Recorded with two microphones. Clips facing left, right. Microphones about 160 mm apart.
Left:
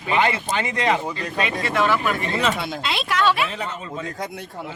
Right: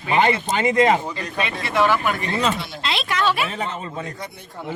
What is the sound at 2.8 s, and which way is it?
Speech, 5° left (ahead or behind).